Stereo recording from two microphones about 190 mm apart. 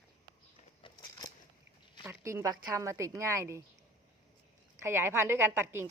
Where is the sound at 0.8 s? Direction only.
20° left (ahead or behind).